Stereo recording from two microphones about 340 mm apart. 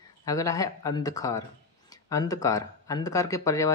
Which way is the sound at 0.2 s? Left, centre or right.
Centre.